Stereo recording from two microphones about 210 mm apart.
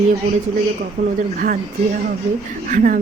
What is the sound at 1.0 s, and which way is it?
Speech, 35° right (ahead or behind).